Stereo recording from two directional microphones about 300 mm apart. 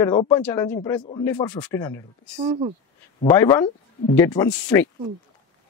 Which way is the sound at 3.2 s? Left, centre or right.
Centre.